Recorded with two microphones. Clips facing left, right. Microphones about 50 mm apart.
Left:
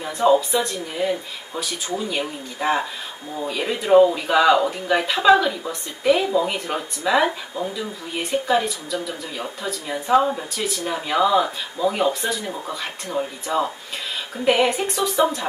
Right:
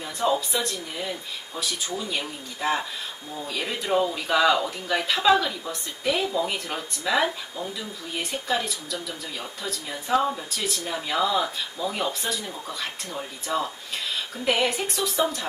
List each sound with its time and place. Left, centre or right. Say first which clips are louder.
0.0 s speech: left 7 dB; centre